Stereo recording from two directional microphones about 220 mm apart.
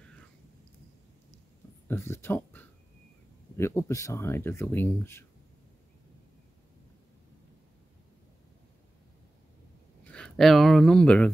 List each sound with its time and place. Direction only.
1.9 s speech: 10° left (ahead or behind)
10.0 s speech: 5° left (ahead or behind)